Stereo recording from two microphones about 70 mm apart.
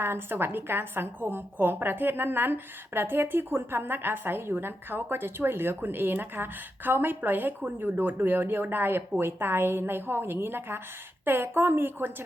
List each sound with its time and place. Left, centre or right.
0.0 s a woman's voice: right